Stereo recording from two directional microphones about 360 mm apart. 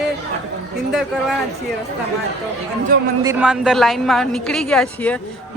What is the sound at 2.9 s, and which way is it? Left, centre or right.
Speech, right.